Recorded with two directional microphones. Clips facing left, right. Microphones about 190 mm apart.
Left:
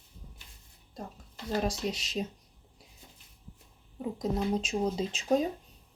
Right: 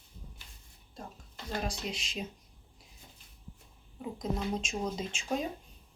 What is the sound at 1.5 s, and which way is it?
Speech, 40° left (ahead or behind).